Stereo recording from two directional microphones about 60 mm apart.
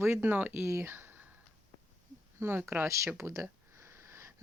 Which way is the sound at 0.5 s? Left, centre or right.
Right.